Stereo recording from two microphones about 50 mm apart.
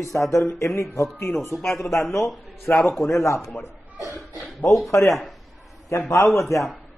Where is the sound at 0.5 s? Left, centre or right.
Left.